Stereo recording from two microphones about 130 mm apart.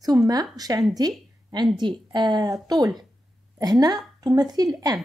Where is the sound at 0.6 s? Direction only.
30° right (ahead or behind).